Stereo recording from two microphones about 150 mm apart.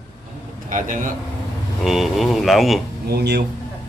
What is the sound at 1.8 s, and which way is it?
Speech, centre (ahead or behind).